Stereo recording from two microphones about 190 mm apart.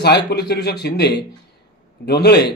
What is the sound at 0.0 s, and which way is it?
Speech, 60° left (ahead or behind).